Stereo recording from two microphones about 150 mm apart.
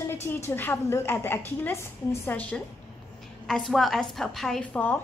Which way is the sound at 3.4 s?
Centre (ahead or behind).